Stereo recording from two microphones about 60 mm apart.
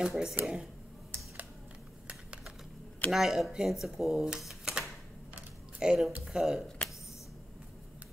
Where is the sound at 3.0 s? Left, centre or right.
Centre.